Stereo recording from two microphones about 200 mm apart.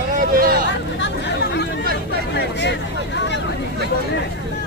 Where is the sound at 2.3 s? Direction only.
60° left (ahead or behind).